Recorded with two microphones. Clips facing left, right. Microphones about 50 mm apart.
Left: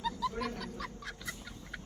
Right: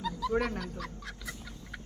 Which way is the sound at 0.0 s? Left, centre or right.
Centre.